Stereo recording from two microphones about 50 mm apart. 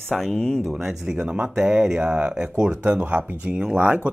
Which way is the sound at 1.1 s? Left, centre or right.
Right.